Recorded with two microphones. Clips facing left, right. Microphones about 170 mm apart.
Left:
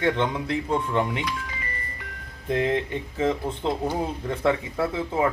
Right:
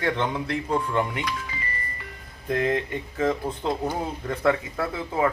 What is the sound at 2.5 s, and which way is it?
Speech, 25° left (ahead or behind).